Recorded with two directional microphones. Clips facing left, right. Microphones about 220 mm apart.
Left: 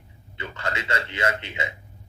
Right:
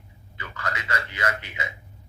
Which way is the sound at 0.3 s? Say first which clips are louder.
Left 3 dB; 25° left (ahead or behind).